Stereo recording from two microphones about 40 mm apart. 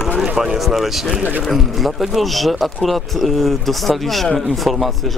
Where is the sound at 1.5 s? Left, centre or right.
Centre.